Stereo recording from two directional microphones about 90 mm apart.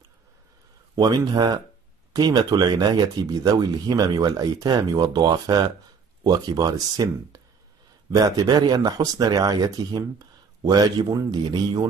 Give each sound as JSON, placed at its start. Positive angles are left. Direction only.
{"t": 0.9, "sound": "speech", "side_deg": -50}